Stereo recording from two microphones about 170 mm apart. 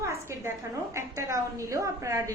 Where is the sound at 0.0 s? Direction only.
15° right (ahead or behind).